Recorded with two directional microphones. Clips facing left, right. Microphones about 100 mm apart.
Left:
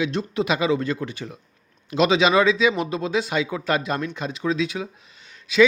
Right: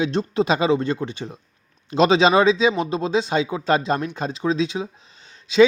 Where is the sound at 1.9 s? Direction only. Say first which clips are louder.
Right 2 dB; 35° right (ahead or behind).